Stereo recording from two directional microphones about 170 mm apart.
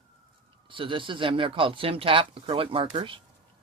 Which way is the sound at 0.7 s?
30° right (ahead or behind).